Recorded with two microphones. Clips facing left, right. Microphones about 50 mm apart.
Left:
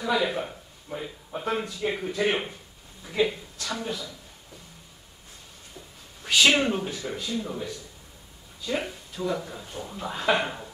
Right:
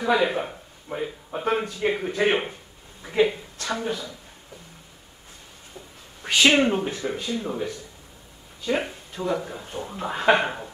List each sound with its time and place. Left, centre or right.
0.0 s speech: right
1.9 s speech: right
3.0 s speech: right
6.2 s speech: right